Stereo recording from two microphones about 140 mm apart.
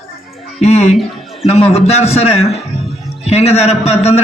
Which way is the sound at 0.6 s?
50° left (ahead or behind).